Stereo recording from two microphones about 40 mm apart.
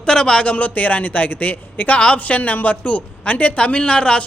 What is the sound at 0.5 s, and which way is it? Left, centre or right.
Speech, left.